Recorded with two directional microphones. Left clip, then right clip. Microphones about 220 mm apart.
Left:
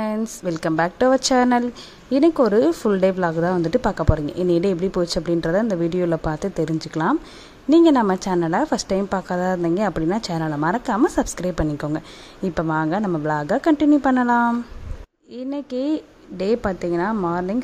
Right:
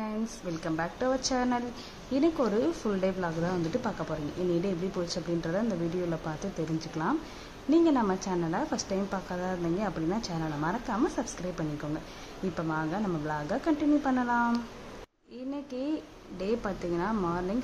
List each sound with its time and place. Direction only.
0.0 s speech: 45° left (ahead or behind)
15.5 s speech: 40° left (ahead or behind)